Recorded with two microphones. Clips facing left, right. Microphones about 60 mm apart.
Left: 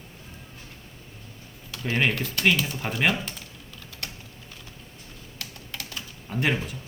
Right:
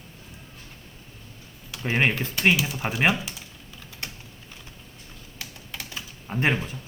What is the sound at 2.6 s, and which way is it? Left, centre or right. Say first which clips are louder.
Speech: right 1 dB; centre.